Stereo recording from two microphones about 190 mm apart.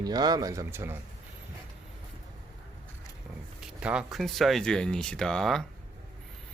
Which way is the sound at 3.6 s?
5° right (ahead or behind).